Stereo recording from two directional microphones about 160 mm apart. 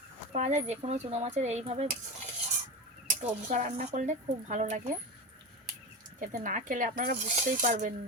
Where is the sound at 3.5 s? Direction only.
50° right (ahead or behind).